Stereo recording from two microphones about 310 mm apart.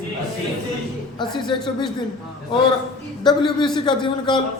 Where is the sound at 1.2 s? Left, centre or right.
Centre.